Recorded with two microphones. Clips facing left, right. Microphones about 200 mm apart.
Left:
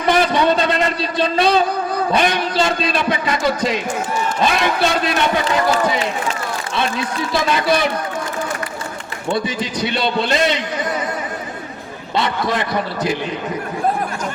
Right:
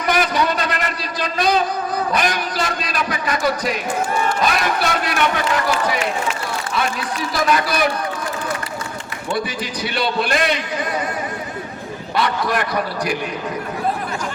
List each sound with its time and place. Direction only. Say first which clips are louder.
0.0 s a sound: left 3 dB; 25° left (ahead or behind)
2.1 s a man's voice: left 4 dB; 25° left (ahead or behind)
7.3 s a man's voice: left 2 dB; 25° left (ahead or behind)
9.3 s a man's voice: left 3 dB; 25° left (ahead or behind)
12.1 s a man's voice: left 1 dB; 25° left (ahead or behind)